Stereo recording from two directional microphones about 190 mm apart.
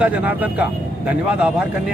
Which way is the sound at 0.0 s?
5° right (ahead or behind).